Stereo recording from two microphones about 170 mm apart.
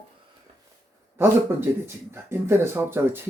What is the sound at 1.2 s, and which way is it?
Speech, 15° right (ahead or behind).